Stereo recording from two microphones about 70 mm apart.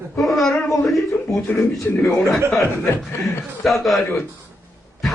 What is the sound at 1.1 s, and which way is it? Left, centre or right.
Speech, left.